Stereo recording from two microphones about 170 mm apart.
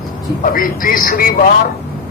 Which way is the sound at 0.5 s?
55° left (ahead or behind).